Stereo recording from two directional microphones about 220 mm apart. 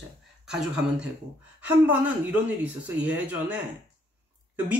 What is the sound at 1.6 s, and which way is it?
Speech, 5° right (ahead or behind).